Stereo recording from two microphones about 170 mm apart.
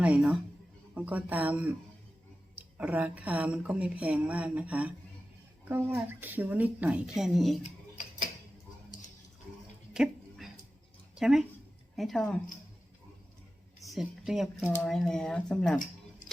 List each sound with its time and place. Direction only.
0.0 s speech: 5° right (ahead or behind)
2.7 s speech: 10° right (ahead or behind)
7.6 s a sound: 50° left (ahead or behind)
9.9 s a sound: centre (ahead or behind)
11.1 s speech: 5° right (ahead or behind)
13.7 s speech: centre (ahead or behind)